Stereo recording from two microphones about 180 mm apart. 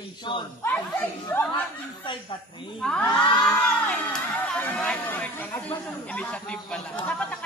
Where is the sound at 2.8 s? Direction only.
5° left (ahead or behind).